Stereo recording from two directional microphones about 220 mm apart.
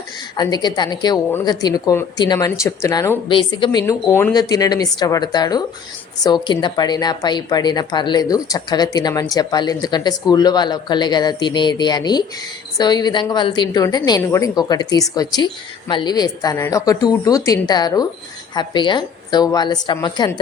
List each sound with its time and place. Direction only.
0.3 s a woman's voice: 20° left (ahead or behind)